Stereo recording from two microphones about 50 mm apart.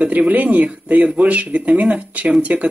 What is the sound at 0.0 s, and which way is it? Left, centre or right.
Speech, right.